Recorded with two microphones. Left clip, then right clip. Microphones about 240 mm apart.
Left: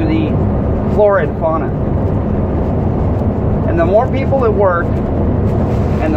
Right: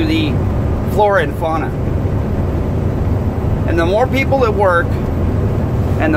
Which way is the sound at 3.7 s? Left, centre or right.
Right.